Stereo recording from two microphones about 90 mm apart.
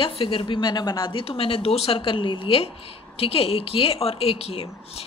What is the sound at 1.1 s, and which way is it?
A woman's voice, 90° left.